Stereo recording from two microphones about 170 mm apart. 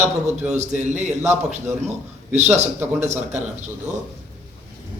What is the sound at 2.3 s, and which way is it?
Speech, 40° right (ahead or behind).